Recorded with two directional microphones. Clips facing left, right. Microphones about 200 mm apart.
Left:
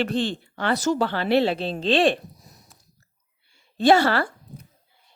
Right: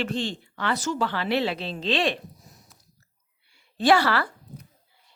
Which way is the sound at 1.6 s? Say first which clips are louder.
Left 5 dB; 50° left (ahead or behind).